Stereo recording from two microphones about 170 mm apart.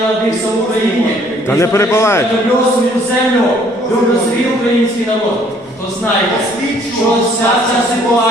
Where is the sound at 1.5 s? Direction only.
15° left (ahead or behind).